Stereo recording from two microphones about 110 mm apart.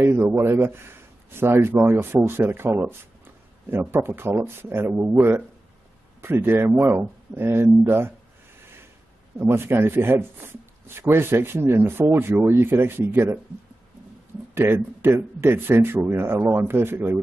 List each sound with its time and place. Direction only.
0.0 s speech: 20° right (ahead or behind)
6.2 s speech: 20° right (ahead or behind)
9.4 s speech: 20° right (ahead or behind)
14.5 s speech: 20° right (ahead or behind)